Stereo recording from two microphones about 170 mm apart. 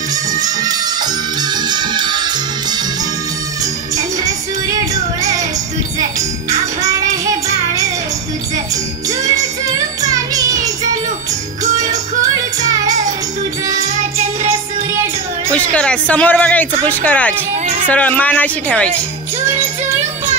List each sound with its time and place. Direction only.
0.1 s music: 20° right (ahead or behind)
10.0 s music: 20° right (ahead or behind)
15.5 s speech: 5° left (ahead or behind)